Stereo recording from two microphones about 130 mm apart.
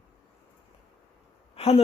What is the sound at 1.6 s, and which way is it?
Speech, 50° left (ahead or behind).